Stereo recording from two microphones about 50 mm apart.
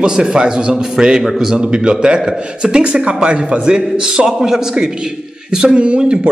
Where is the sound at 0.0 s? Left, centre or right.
Centre.